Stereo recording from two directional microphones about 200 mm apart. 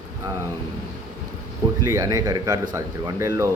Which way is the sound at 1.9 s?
15° right (ahead or behind).